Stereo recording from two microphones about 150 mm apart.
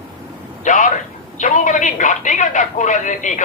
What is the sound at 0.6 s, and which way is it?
A man's voice, 60° left (ahead or behind).